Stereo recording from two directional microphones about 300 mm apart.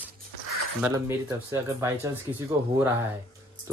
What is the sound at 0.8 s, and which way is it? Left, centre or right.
Speech, centre.